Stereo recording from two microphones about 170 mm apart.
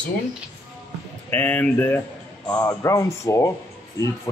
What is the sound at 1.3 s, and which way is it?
Speech, 10° left (ahead or behind).